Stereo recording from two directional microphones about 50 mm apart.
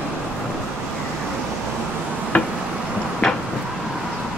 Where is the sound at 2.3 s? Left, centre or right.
Left.